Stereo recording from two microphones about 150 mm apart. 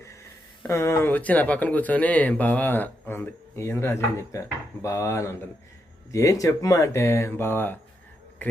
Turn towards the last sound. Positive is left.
turn(degrees=15)  # may be behind; listen again after turning